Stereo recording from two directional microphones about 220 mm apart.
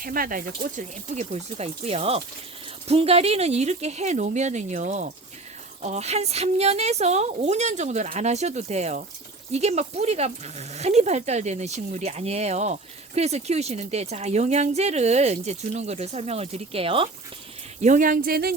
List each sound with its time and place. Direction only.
0.0 s speech: 40° right (ahead or behind)